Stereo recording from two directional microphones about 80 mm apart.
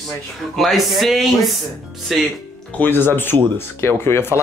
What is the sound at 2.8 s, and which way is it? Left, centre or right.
Speech, left.